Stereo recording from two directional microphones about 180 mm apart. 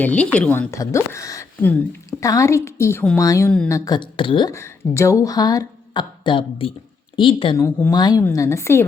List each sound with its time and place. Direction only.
0.0 s a woman's voice: 10° left (ahead or behind); by 7.6 s 30° left (ahead or behind)
7.6 s a woman's voice: 15° left (ahead or behind)